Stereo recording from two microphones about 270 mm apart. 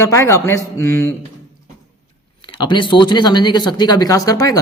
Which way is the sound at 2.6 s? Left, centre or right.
Centre.